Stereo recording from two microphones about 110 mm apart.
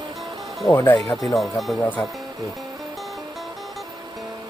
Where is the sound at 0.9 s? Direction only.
Centre (ahead or behind).